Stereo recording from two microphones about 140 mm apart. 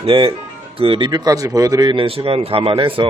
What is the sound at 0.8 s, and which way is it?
Speech, 35° right (ahead or behind).